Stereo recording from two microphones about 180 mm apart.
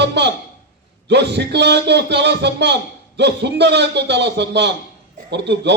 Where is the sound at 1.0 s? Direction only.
70° right (ahead or behind).